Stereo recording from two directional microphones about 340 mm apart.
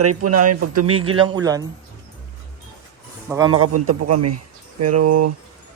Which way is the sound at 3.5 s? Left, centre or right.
Right.